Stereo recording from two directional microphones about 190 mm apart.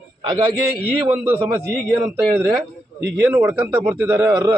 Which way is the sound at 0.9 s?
10° right (ahead or behind).